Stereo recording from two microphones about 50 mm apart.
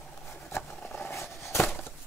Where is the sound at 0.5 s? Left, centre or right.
Left.